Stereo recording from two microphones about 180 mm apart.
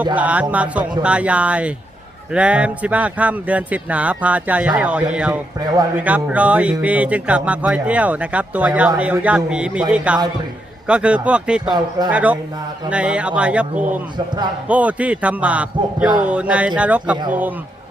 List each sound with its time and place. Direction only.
0.2 s speech: 10° right (ahead or behind)
11.7 s speech: 25° right (ahead or behind)
12.1 s speech: 10° right (ahead or behind)